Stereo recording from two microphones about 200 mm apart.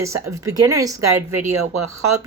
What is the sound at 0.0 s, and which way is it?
Speech, 15° right (ahead or behind).